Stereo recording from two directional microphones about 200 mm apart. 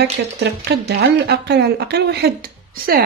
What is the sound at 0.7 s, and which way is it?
Speech, 55° right (ahead or behind).